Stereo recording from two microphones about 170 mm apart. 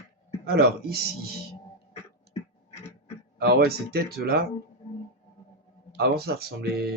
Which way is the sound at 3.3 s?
65° right (ahead or behind).